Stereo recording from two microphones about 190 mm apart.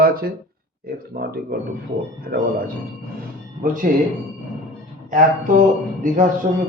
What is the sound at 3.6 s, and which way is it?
Speech, 45° right (ahead or behind).